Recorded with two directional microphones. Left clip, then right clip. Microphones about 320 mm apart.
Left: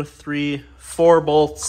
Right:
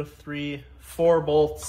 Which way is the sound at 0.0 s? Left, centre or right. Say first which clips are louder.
Left 8 dB; left.